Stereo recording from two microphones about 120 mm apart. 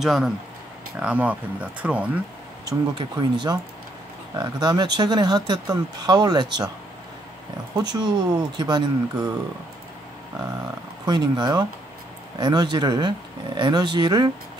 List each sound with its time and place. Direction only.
0.0 s speech: 5° right (ahead or behind)
2.6 s speech: 35° right (ahead or behind)
7.7 s speech: 35° right (ahead or behind)
11.1 s speech: 35° right (ahead or behind)